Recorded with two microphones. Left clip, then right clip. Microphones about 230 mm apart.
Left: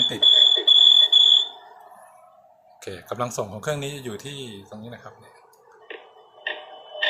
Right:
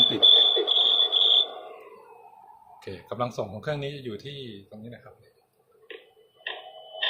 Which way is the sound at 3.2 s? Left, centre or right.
Centre.